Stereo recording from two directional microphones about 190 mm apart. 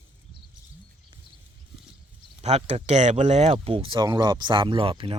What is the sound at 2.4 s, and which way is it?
Speech, 35° right (ahead or behind).